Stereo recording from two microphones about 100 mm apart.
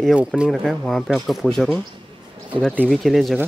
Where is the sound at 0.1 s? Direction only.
5° right (ahead or behind).